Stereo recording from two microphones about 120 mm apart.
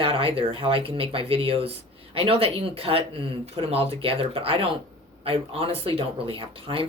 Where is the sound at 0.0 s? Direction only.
50° right (ahead or behind).